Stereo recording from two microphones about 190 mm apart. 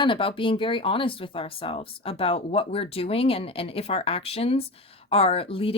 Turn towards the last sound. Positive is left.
turn(degrees=30)  # may be behind; listen again after turning